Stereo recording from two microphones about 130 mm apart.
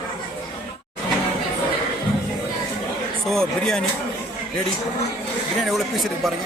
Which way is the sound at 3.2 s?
5° left (ahead or behind).